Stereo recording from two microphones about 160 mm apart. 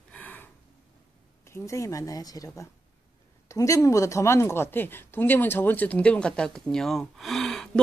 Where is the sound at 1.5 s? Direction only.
15° left (ahead or behind).